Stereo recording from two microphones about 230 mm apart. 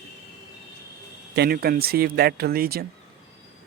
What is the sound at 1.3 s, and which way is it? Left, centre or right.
Speech, right.